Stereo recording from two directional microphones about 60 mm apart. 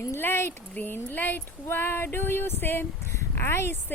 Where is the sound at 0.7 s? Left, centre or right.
Left.